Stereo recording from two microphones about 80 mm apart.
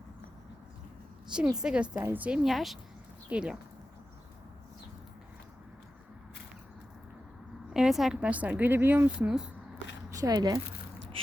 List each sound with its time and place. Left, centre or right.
1.3 s a woman's voice: centre
2.4 s a woman's voice: centre
3.2 s speech: centre
7.7 s a woman's voice: centre
8.2 s speech: centre
10.1 s a woman's voice: right